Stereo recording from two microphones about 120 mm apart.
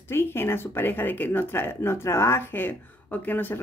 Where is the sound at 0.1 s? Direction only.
20° left (ahead or behind).